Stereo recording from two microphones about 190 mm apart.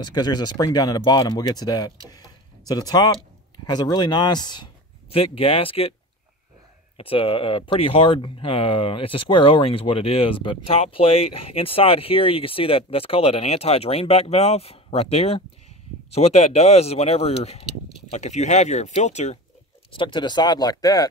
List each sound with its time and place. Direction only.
0.0 s speech: 20° left (ahead or behind)
7.0 s speech: 30° left (ahead or behind)
19.9 s speech: 25° left (ahead or behind)